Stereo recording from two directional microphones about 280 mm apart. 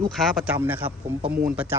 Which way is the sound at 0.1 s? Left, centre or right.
Centre.